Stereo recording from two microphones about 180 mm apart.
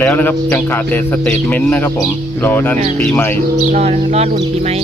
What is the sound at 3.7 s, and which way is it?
Speech, 40° right (ahead or behind).